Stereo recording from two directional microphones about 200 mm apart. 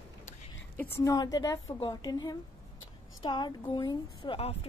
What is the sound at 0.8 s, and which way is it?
A woman's voice, 15° left (ahead or behind).